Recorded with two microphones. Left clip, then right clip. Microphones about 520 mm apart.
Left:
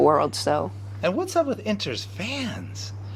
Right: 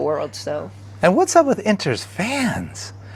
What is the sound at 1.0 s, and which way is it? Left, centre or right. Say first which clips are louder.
Speech: right 9 dB; right.